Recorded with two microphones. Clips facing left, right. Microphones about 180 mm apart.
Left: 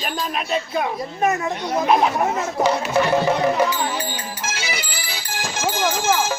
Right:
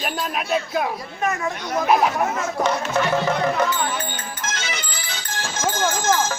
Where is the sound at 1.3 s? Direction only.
20° left (ahead or behind).